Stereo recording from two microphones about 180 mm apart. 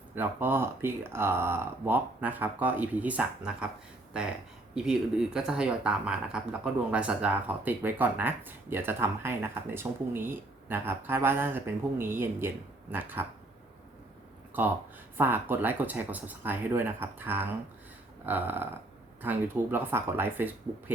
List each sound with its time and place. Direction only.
0.2 s speech: 10° right (ahead or behind)
14.5 s speech: 10° right (ahead or behind)